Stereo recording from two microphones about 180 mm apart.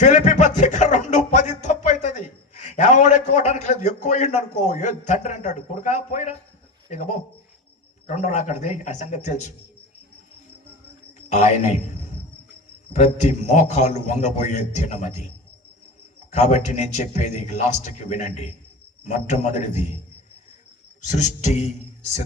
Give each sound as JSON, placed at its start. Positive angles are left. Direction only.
{"t": 0.0, "sound": "music", "side_deg": 40}
{"t": 8.0, "sound": "a man's voice", "side_deg": 40}
{"t": 11.3, "sound": "a man's voice", "side_deg": 40}
{"t": 12.9, "sound": "a man's voice", "side_deg": 40}
{"t": 16.3, "sound": "a man's voice", "side_deg": 40}
{"t": 21.0, "sound": "a man's voice", "side_deg": 40}